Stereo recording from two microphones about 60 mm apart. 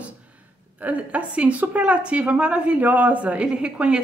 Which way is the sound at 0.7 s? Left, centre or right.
Right.